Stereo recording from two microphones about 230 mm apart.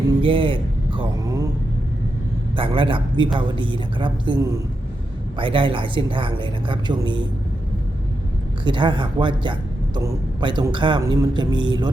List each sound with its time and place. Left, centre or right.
0.1 s a sound: right
2.6 s a man's voice: right
8.6 s a man's voice: centre